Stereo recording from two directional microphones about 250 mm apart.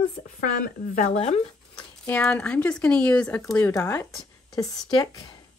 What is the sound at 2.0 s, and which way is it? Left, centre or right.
Speech, centre.